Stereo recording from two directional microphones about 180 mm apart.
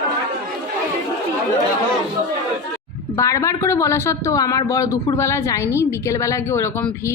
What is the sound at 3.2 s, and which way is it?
Speech, 15° left (ahead or behind).